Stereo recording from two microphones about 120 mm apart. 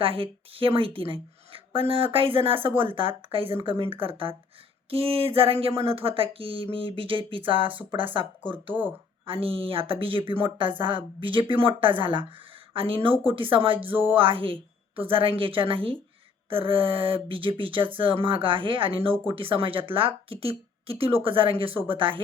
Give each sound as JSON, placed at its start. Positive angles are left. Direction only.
{"t": 0.0, "sound": "speech", "side_deg": -50}